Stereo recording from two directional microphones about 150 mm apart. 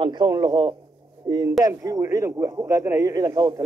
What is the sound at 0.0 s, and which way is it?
A man's voice, 30° right (ahead or behind).